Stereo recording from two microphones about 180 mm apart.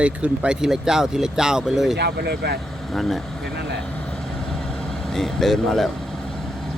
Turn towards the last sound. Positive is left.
turn(degrees=0)  # may be behind; listen again after turning